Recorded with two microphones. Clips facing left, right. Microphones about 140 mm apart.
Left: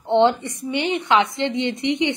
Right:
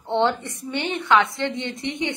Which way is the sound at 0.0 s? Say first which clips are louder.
Left 5 dB; 15° left (ahead or behind).